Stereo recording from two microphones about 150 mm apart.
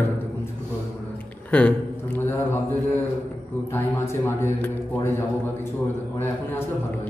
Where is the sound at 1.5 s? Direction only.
10° left (ahead or behind).